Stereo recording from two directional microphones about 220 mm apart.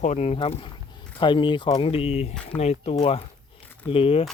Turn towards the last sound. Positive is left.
turn(degrees=25)  # may be behind; listen again after turning